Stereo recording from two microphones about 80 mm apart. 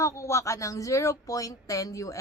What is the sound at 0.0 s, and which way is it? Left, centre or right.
Speech, left.